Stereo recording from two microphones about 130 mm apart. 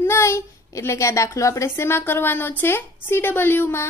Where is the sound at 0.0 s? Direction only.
20° left (ahead or behind).